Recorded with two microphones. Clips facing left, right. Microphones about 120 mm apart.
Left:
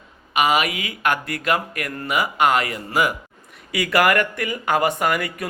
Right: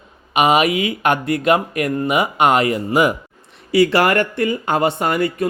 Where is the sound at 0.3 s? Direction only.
25° right (ahead or behind).